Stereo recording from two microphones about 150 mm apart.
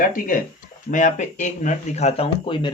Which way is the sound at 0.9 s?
55° left (ahead or behind).